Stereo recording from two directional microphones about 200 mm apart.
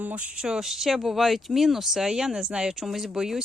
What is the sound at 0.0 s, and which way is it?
Speech, 5° right (ahead or behind).